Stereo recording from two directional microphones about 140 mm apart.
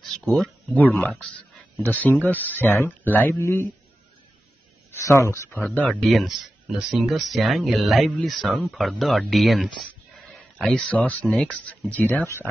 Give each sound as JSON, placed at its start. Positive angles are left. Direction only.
{"t": 0.0, "sound": "a sound", "side_deg": 5}
{"t": 0.9, "sound": "speech", "side_deg": 5}
{"t": 4.9, "sound": "speech", "side_deg": 20}
{"t": 5.9, "sound": "speech", "side_deg": 0}